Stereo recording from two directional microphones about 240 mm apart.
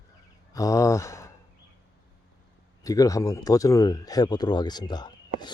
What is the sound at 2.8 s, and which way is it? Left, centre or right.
Speech, centre.